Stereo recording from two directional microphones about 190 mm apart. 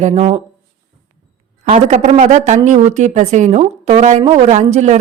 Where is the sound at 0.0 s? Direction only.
35° right (ahead or behind).